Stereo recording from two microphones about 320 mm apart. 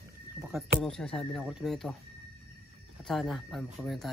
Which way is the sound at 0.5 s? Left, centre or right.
Centre.